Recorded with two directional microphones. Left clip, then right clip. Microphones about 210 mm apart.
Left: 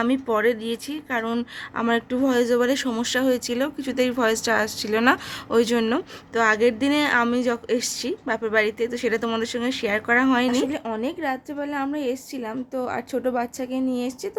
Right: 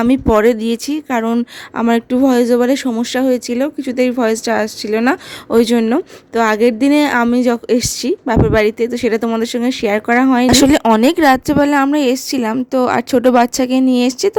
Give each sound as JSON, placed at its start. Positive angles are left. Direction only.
{"t": 0.0, "sound": "speech", "side_deg": -45}